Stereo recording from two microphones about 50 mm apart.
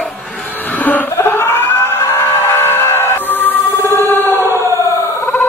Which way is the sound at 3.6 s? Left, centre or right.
Left.